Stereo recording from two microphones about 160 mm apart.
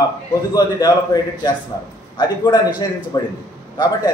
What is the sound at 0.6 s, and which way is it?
A man's voice, 20° left (ahead or behind).